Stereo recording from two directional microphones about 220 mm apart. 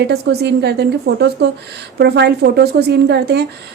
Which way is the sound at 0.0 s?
50° right (ahead or behind).